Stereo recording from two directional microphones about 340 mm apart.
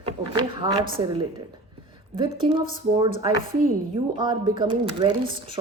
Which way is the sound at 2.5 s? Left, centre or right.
Centre.